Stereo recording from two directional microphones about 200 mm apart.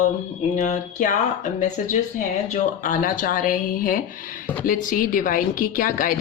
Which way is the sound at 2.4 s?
40° left (ahead or behind).